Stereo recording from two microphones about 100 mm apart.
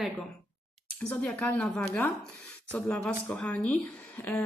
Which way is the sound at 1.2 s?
10° left (ahead or behind).